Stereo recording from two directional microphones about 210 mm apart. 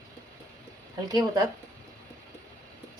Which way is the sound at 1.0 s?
20° right (ahead or behind).